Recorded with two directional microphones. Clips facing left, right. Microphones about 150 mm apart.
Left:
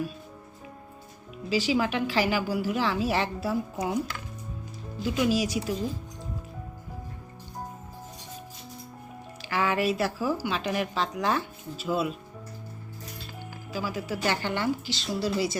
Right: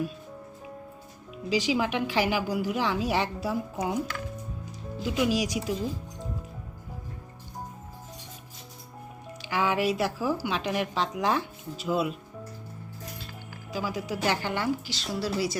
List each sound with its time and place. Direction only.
1.5 s a woman's voice: 15° right (ahead or behind)
5.0 s a woman's voice: 15° right (ahead or behind)
9.5 s a woman's voice: 10° right (ahead or behind)
13.7 s a woman's voice: 15° right (ahead or behind)